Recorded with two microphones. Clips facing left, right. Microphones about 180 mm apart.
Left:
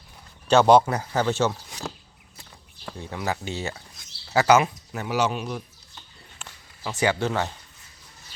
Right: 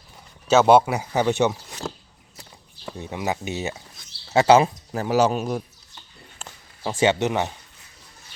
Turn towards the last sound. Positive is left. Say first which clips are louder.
# right 3 dB
turn(degrees=-20)  # may be behind; listen again after turning